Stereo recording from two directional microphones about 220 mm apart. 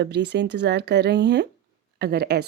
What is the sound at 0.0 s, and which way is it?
A woman's voice, 50° right (ahead or behind).